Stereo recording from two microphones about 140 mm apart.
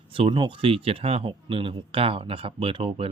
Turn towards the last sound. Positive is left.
turn(degrees=-40)  # may be behind; listen again after turning